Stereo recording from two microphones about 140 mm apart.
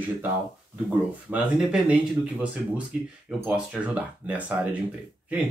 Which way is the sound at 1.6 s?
5° right (ahead or behind).